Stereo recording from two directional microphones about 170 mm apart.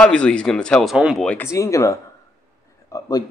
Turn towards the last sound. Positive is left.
turn(degrees=20)  # may be behind; listen again after turning